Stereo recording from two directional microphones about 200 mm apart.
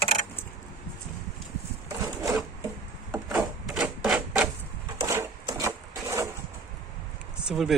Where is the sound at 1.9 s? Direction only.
15° right (ahead or behind).